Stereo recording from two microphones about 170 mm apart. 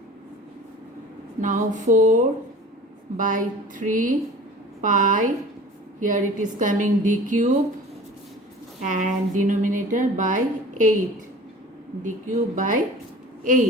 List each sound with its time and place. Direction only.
1.4 s speech: 50° right (ahead or behind)
8.8 s speech: 45° right (ahead or behind)
12.0 s a woman's voice: 50° right (ahead or behind)